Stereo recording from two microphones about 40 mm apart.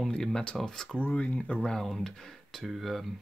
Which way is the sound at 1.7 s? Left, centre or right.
Centre.